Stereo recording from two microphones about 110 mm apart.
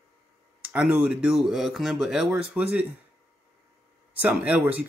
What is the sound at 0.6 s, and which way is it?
Speech, 15° right (ahead or behind).